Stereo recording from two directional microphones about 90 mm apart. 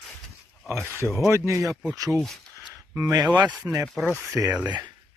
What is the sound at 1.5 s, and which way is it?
Speech, 35° right (ahead or behind).